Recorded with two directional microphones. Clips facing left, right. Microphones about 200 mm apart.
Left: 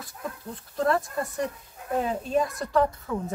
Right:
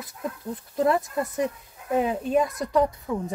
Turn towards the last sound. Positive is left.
turn(degrees=-20)  # may be behind; listen again after turning